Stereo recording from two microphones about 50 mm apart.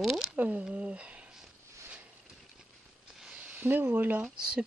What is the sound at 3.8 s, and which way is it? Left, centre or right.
Speech, right.